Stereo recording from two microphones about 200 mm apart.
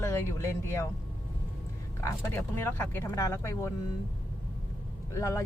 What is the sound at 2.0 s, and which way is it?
Speech, 10° left (ahead or behind).